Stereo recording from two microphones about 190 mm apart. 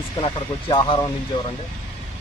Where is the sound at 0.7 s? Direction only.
25° left (ahead or behind).